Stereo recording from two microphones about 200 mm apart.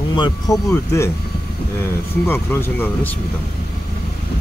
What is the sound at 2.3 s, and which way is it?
Speech, 10° left (ahead or behind).